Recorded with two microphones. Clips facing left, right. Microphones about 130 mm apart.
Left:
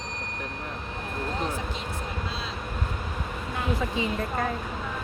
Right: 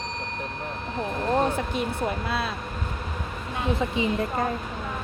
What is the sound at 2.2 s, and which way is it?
Speech, 60° right (ahead or behind).